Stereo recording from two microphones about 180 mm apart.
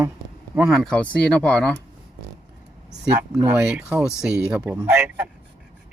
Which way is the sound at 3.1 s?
10° right (ahead or behind).